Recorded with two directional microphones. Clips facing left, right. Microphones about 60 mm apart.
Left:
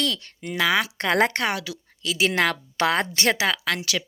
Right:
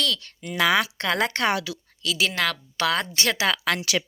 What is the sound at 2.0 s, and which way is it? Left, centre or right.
A woman's voice, left.